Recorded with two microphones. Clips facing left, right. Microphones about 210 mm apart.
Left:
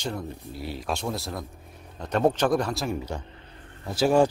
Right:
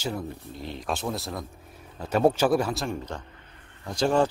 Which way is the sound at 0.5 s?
5° left (ahead or behind).